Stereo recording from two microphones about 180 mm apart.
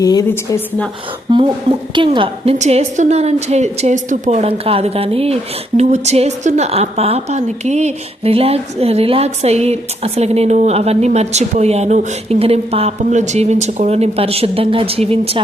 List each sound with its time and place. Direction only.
0.0 s a woman's voice: 20° left (ahead or behind)
1.3 s a woman's voice: 25° right (ahead or behind)